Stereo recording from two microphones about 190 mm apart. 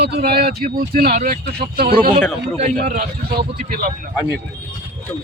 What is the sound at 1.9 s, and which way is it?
Speech, 25° right (ahead or behind).